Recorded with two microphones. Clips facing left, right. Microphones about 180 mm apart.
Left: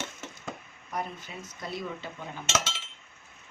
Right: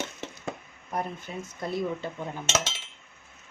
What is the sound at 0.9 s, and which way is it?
Speech, 55° right (ahead or behind).